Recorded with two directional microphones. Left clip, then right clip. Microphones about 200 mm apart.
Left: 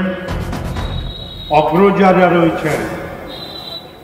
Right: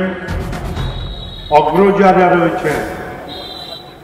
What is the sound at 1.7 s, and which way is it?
Speech, 55° left (ahead or behind).